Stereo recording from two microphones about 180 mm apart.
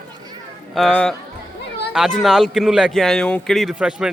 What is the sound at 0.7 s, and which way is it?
Speech, 5° left (ahead or behind).